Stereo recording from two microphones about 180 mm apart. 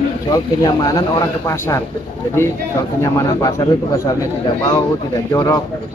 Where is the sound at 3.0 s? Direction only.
15° left (ahead or behind).